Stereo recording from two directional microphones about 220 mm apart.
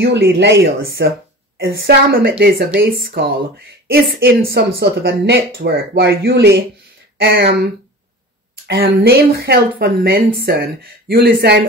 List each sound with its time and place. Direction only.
0.0 s a woman's voice: 50° right (ahead or behind)